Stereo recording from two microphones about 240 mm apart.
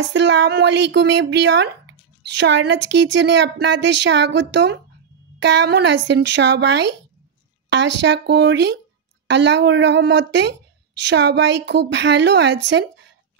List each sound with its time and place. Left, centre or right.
0.0 s a woman's voice: right